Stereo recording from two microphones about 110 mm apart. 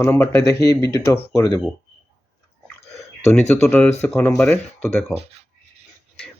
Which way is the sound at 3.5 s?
15° left (ahead or behind).